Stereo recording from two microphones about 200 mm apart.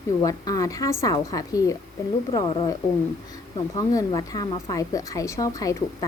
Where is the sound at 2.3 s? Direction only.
25° left (ahead or behind).